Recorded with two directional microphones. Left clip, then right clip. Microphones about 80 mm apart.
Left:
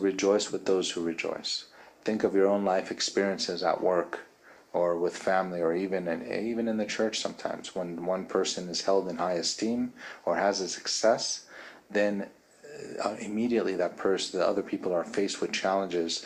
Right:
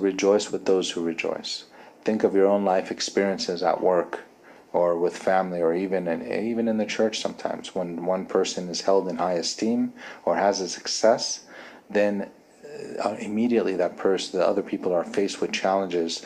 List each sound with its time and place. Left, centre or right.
0.0 s speech: right